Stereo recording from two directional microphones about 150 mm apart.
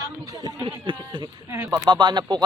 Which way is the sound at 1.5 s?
15° right (ahead or behind).